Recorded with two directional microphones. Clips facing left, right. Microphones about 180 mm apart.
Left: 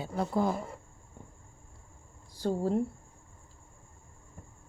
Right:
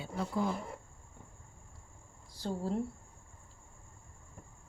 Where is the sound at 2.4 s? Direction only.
50° left (ahead or behind).